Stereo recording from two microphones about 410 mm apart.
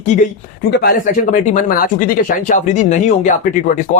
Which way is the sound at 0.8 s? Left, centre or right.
Centre.